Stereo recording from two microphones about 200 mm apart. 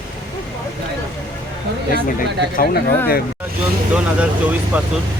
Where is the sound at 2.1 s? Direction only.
45° left (ahead or behind).